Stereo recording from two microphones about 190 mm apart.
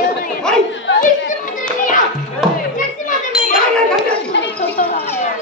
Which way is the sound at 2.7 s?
45° left (ahead or behind).